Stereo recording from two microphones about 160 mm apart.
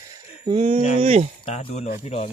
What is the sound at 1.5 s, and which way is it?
Speech, 40° left (ahead or behind).